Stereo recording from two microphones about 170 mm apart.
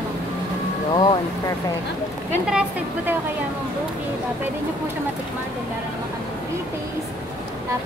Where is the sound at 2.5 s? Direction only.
5° right (ahead or behind).